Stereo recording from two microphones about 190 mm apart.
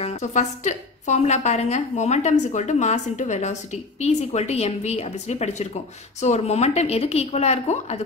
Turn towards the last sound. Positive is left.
turn(degrees=35)  # may be behind; listen again after turning